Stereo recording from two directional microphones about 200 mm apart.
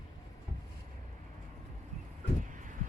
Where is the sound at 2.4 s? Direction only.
40° right (ahead or behind).